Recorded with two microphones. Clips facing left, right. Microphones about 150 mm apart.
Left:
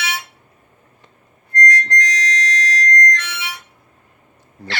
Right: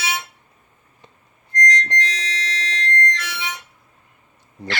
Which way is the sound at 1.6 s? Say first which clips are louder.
Left 3 dB; 30° right (ahead or behind).